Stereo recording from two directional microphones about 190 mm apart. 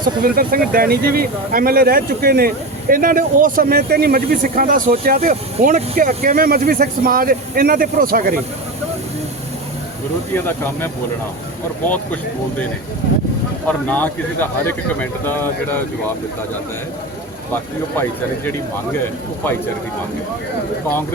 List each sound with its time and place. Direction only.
0.2 s speech: 50° right (ahead or behind)
10.3 s speech: 10° left (ahead or behind)
13.7 s speech: 10° left (ahead or behind)